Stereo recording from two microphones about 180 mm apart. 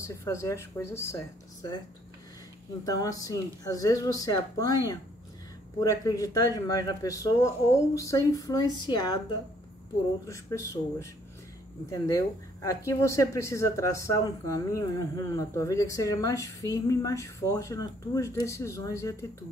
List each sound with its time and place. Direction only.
0.0 s speech: 15° left (ahead or behind)
2.8 s speech: 20° left (ahead or behind)
10.2 s speech: 15° left (ahead or behind)